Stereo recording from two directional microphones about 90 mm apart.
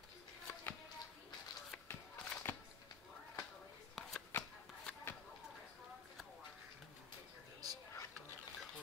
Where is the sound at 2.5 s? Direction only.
25° left (ahead or behind).